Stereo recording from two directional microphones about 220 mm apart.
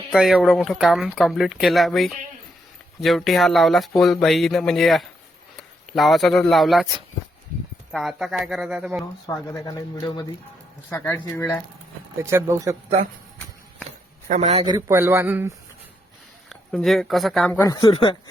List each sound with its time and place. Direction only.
0.1 s speech: centre (ahead or behind)
7.9 s speech: centre (ahead or behind)
9.2 s speech: 10° left (ahead or behind)
12.1 s a man's voice: 10° right (ahead or behind)
14.3 s a man's voice: 30° right (ahead or behind); by 15.5 s 10° right (ahead or behind)
16.5 s speech: centre (ahead or behind)
17.7 s speech: 15° left (ahead or behind)